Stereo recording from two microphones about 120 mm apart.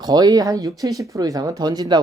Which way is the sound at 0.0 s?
35° right (ahead or behind).